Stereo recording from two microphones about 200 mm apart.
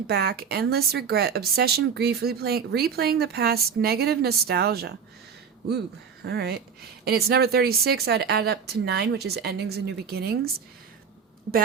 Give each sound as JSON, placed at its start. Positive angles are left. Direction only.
{"t": 0.1, "sound": "speech", "side_deg": -50}
{"t": 6.2, "sound": "speech", "side_deg": -55}